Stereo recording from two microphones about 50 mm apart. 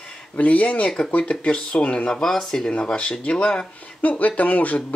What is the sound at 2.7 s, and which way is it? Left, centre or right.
Speech, left.